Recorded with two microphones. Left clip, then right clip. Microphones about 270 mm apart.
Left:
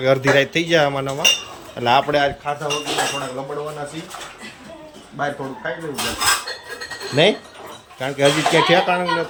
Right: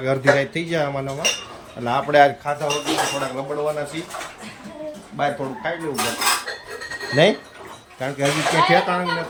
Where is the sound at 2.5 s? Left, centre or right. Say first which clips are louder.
Even; right.